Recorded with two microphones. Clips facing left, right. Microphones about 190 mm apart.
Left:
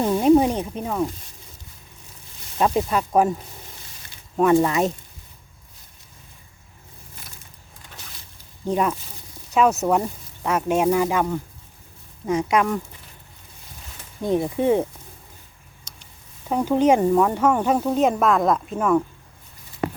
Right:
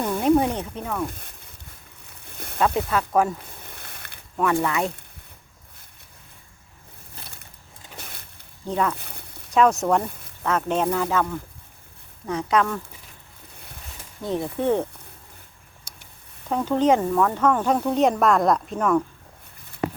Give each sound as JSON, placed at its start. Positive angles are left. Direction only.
{"t": 0.0, "sound": "snake", "side_deg": 20}
{"t": 1.0, "sound": "speech", "side_deg": -55}
{"t": 2.0, "sound": "a sound", "side_deg": -60}
{"t": 2.6, "sound": "speech", "side_deg": 15}
{"t": 3.6, "sound": "a sound", "side_deg": -60}
{"t": 4.4, "sound": "speech", "side_deg": 25}
{"t": 7.9, "sound": "a sound", "side_deg": -60}
{"t": 8.6, "sound": "speech", "side_deg": 15}
{"t": 9.0, "sound": "a sound", "side_deg": -60}
{"t": 9.6, "sound": "speech", "side_deg": 5}
{"t": 14.2, "sound": "speech", "side_deg": 15}
{"t": 16.5, "sound": "speech", "side_deg": 10}